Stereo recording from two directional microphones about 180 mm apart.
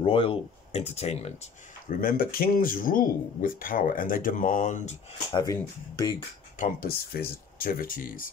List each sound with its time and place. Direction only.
0.0 s speech: 30° left (ahead or behind)
1.9 s speech: 55° left (ahead or behind)
5.3 s speech: 20° left (ahead or behind)
6.6 s speech: 55° left (ahead or behind)